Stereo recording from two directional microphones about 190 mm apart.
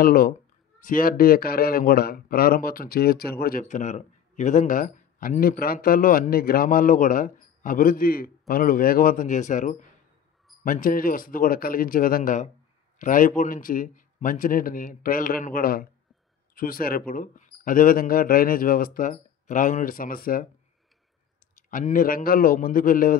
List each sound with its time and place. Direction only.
0.0 s a man's voice: 50° left (ahead or behind)
21.6 s a man's voice: 45° left (ahead or behind)